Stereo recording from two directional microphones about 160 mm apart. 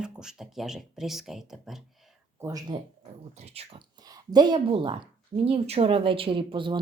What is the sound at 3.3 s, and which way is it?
Speech, 45° right (ahead or behind).